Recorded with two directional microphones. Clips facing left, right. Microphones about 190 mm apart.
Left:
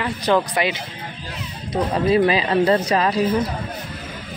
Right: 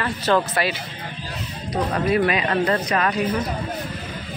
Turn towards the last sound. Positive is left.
turn(degrees=30)  # may be behind; listen again after turning